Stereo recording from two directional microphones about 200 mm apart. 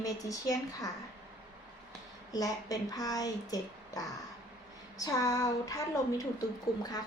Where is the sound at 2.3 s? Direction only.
20° left (ahead or behind).